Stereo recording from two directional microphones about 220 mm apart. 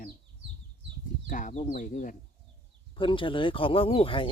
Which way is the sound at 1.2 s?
35° left (ahead or behind).